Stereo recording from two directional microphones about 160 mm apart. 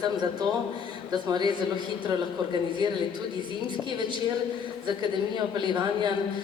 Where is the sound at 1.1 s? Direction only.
25° right (ahead or behind).